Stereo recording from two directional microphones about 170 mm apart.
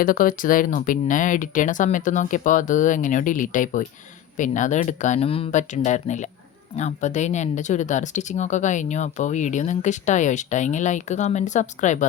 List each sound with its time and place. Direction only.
0.0 s speech: 55° left (ahead or behind); by 5.5 s 35° left (ahead or behind)
5.5 s speech: 45° left (ahead or behind)